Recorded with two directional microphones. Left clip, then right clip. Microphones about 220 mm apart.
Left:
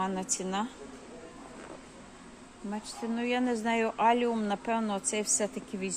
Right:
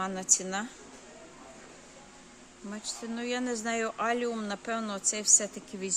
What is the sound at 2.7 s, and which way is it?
Speech, 20° right (ahead or behind).